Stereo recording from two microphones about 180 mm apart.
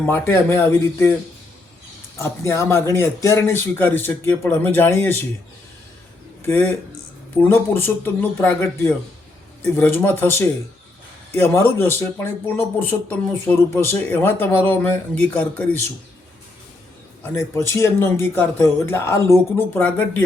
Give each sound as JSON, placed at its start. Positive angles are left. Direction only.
{"t": 0.0, "sound": "speech", "side_deg": 10}
{"t": 2.1, "sound": "speech", "side_deg": 15}
{"t": 6.4, "sound": "speech", "side_deg": 10}
{"t": 17.2, "sound": "speech", "side_deg": 15}